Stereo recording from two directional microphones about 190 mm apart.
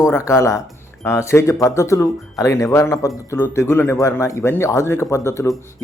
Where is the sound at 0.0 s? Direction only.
15° left (ahead or behind).